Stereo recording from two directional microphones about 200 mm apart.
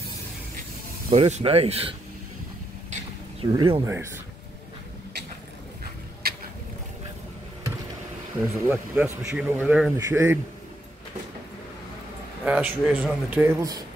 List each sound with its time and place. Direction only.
1.1 s speech: 30° right (ahead or behind)
3.3 s speech: 25° right (ahead or behind)
3.8 s speech: 15° right (ahead or behind)
6.2 s a sound: 50° right (ahead or behind)
8.6 s speech: 10° right (ahead or behind)
12.4 s speech: 5° right (ahead or behind)